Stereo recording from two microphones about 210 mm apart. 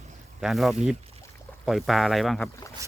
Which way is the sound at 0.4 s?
Centre (ahead or behind).